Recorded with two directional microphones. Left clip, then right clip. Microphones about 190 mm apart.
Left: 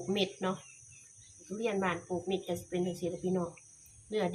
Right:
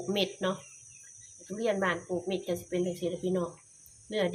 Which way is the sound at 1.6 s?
30° left (ahead or behind).